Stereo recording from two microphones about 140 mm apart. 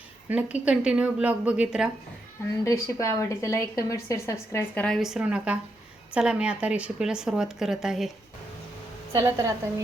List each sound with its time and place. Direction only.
0.3 s speech: 10° right (ahead or behind)
2.6 s a woman's voice: 25° left (ahead or behind)
4.8 s speech: centre (ahead or behind)
9.1 s a woman's voice: 20° right (ahead or behind)